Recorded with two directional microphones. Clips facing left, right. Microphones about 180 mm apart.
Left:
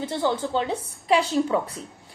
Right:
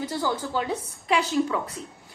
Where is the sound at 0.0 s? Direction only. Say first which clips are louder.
Left 3 dB; 25° left (ahead or behind).